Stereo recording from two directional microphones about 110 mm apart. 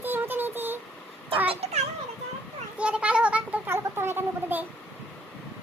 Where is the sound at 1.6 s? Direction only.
70° right (ahead or behind).